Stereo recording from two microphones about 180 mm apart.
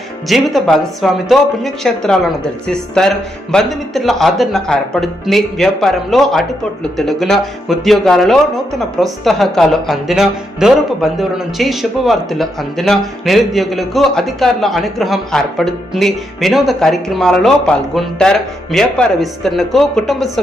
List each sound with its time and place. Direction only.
0.3 s speech: centre (ahead or behind)